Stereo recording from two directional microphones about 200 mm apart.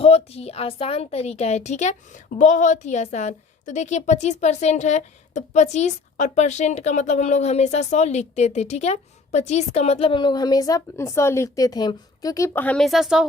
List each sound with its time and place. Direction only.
0.0 s a woman's voice: 30° left (ahead or behind); by 13.2 s centre (ahead or behind)